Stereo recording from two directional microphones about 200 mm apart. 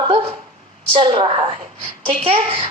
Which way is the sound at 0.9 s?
25° right (ahead or behind).